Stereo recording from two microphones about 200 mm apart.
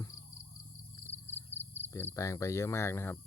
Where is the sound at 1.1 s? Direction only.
10° left (ahead or behind).